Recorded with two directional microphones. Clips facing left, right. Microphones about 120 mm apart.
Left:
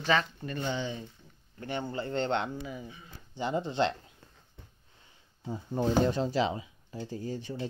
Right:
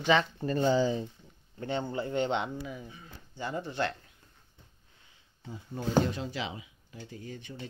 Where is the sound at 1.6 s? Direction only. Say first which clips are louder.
Right 2 dB; 20° right (ahead or behind).